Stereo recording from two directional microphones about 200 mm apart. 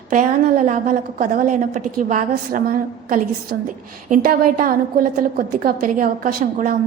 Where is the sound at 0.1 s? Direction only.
40° right (ahead or behind).